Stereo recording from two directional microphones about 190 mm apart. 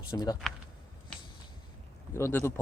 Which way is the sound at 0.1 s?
20° left (ahead or behind).